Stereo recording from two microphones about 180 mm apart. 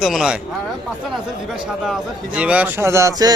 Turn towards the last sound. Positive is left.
turn(degrees=-15)  # may be behind; listen again after turning